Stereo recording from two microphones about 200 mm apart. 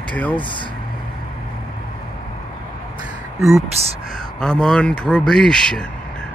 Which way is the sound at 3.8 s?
30° right (ahead or behind).